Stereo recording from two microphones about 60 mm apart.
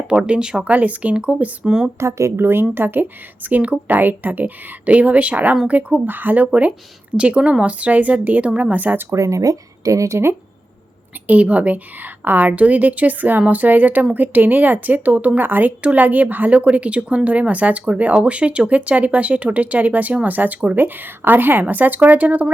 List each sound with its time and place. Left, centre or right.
0.1 s speech: centre
0.6 s speech: right
2.0 s speech: right
2.3 s a woman's voice: right
9.1 s speech: right
11.3 s a woman's voice: right